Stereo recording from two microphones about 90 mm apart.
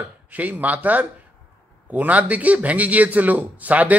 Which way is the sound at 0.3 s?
20° right (ahead or behind).